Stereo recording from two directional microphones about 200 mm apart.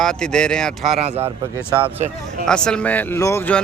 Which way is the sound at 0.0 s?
5° left (ahead or behind).